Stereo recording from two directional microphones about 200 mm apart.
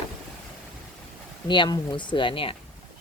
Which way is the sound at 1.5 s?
20° left (ahead or behind).